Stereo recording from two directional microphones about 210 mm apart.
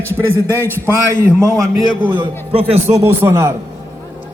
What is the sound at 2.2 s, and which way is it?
Speech, 25° right (ahead or behind).